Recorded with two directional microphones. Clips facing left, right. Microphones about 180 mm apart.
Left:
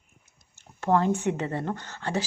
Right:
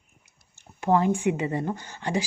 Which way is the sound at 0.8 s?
10° right (ahead or behind).